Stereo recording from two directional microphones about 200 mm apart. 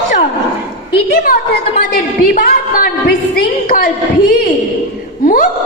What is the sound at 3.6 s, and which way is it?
Speech, 45° left (ahead or behind).